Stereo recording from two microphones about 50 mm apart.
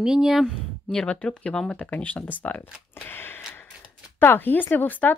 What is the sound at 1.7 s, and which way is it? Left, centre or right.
Speech, left.